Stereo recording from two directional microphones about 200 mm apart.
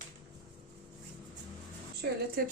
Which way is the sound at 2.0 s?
50° right (ahead or behind).